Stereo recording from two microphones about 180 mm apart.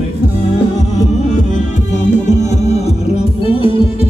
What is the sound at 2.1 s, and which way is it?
Music, 40° left (ahead or behind).